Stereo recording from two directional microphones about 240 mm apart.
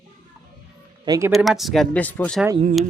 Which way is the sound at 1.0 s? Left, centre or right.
Centre.